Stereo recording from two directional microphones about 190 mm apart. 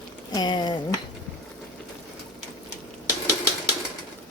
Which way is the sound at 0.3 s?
20° left (ahead or behind).